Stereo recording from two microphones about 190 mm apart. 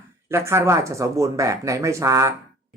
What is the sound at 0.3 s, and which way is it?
Speech, 15° right (ahead or behind).